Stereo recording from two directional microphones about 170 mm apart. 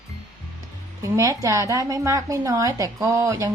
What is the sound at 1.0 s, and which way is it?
A woman's voice, 20° right (ahead or behind).